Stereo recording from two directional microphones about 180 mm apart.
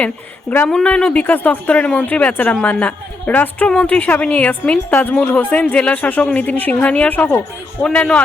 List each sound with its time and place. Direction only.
0.5 s speech: 10° left (ahead or behind)